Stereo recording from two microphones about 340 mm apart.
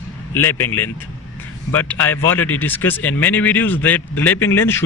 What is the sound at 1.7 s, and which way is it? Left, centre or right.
Speech, centre.